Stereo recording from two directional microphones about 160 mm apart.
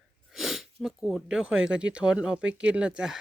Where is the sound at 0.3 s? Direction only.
Centre (ahead or behind).